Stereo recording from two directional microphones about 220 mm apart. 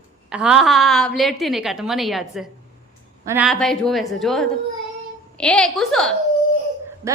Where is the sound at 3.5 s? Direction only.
Centre (ahead or behind).